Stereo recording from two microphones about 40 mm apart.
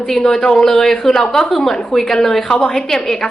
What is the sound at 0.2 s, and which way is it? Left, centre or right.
A woman's voice, centre.